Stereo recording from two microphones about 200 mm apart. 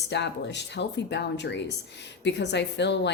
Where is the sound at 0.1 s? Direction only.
60° left (ahead or behind).